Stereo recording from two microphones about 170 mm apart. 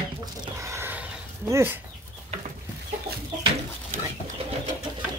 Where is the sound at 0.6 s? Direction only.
15° right (ahead or behind).